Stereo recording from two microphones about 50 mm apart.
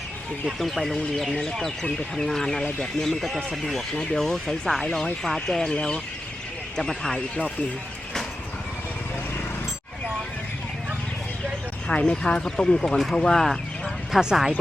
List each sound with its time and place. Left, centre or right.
0.6 s speech: centre
11.9 s speech: centre
14.1 s speech: centre